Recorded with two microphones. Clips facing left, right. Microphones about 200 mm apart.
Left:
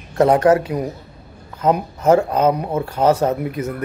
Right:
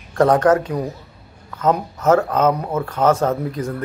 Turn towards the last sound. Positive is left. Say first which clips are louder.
# left 1 dB
turn(degrees=10)  # may be behind; listen again after turning